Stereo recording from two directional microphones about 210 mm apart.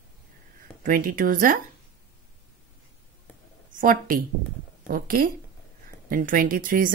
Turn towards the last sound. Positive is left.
turn(degrees=-40)  # may be behind; listen again after turning